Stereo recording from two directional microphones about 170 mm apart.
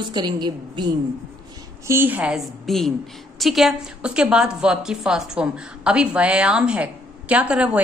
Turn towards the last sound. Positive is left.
turn(degrees=-5)  # may be behind; listen again after turning